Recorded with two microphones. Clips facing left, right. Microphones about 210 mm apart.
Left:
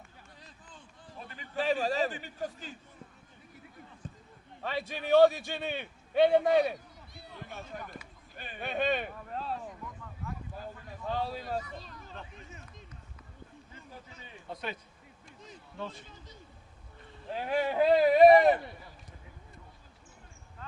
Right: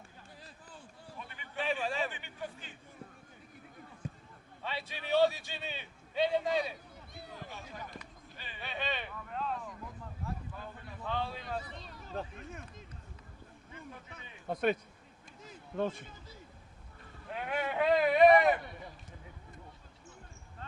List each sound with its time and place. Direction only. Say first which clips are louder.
1.1 s a man's voice: left 5 dB; 35° left (ahead or behind)
4.6 s a man's voice: left 6 dB; 45° left (ahead or behind)
7.8 s speech: left 2 dB; centre (ahead or behind)
8.4 s a sound: left 8 dB; 50° left (ahead or behind); by 9.7 s 35° left (ahead or behind)
9.8 s a sound: even; 30° right (ahead or behind)
10.5 s a sound: left 3 dB; 40° left (ahead or behind)
14.5 s speech: right 9 dB; 50° right (ahead or behind)
15.8 s speech: right 7 dB; 55° right (ahead or behind)
17.2 s speech: left 5 dB; 30° left (ahead or behind)